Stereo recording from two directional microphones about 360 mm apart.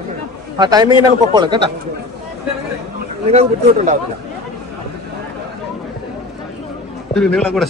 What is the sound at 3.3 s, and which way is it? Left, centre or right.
Speech, centre.